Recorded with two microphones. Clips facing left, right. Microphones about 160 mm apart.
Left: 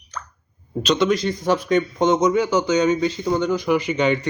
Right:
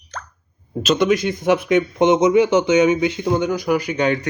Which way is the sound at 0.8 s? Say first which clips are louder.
Right 2 dB; 5° right (ahead or behind).